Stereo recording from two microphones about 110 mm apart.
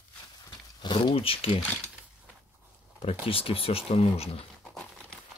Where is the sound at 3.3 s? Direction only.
60° left (ahead or behind).